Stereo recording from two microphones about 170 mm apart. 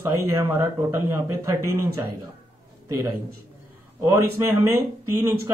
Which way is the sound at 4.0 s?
15° right (ahead or behind).